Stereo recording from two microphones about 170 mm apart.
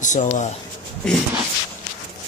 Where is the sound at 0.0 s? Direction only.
45° left (ahead or behind).